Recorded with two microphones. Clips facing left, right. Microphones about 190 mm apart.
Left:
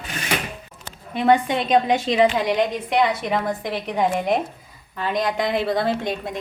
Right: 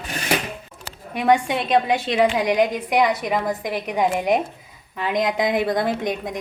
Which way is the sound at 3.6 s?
15° right (ahead or behind).